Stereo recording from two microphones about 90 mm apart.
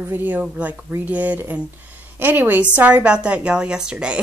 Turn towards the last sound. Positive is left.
turn(degrees=-10)  # may be behind; listen again after turning